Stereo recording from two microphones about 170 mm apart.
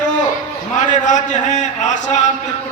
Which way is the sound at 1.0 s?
45° left (ahead or behind).